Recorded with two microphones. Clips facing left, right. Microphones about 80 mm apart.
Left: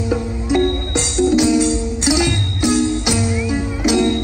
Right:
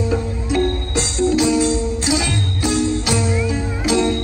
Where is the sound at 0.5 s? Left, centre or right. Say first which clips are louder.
Left 3 dB; centre.